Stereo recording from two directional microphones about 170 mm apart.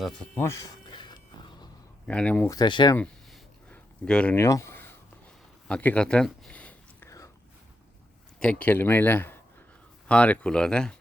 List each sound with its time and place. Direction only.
0.0 s speech: 5° left (ahead or behind)
0.4 s a sound: 20° left (ahead or behind)
2.0 s speech: 10° left (ahead or behind)
2.6 s speech: 25° left (ahead or behind)
3.7 s a sound: 5° left (ahead or behind)
8.4 s speech: 5° left (ahead or behind)